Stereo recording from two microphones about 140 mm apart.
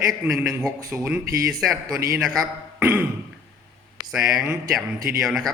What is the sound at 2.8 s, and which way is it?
Speech, 15° right (ahead or behind).